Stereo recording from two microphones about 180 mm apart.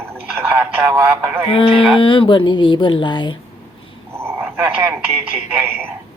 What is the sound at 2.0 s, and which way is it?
Speech, 30° left (ahead or behind).